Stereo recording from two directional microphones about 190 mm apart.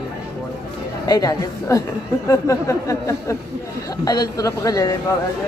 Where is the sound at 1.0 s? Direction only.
20° left (ahead or behind).